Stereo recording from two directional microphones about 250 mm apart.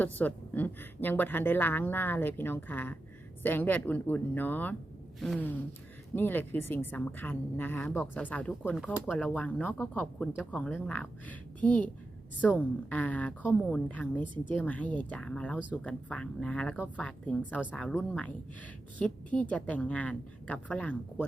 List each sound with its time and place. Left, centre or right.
0.0 s a woman's voice: centre